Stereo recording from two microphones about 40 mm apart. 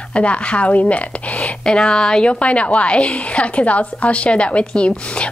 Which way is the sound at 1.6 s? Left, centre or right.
Centre.